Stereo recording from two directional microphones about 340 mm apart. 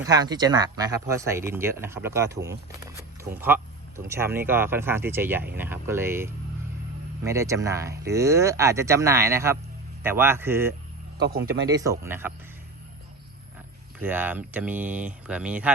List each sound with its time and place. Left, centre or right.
0.0 s speech: centre
11.3 s speech: right
11.7 s speech: centre
14.0 s speech: centre